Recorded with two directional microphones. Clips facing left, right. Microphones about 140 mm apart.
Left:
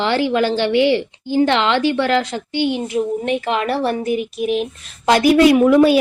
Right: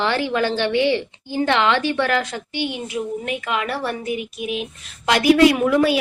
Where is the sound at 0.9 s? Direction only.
30° left (ahead or behind).